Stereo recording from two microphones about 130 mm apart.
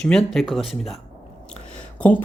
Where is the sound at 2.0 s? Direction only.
10° left (ahead or behind).